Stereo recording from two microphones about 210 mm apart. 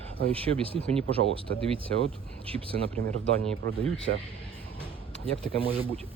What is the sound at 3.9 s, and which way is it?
Speech, 65° right (ahead or behind).